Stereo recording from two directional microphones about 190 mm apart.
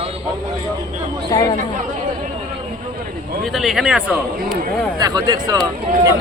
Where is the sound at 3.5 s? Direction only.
Centre (ahead or behind).